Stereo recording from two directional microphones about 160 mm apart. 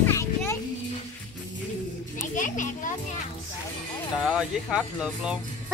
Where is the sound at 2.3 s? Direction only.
55° left (ahead or behind).